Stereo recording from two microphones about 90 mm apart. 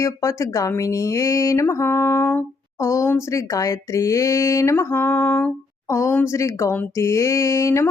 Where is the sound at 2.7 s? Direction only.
35° left (ahead or behind); by 5.5 s 20° left (ahead or behind).